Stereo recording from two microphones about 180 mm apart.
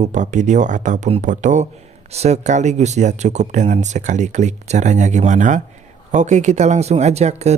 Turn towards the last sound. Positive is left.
turn(degrees=-35)  # may be behind; listen again after turning